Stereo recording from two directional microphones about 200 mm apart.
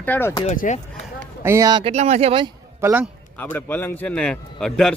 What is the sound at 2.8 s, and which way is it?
Speech, 10° right (ahead or behind).